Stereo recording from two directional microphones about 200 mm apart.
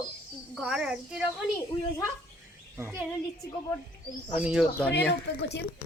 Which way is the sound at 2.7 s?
10° right (ahead or behind).